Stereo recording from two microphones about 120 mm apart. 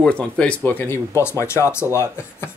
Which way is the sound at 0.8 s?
20° left (ahead or behind).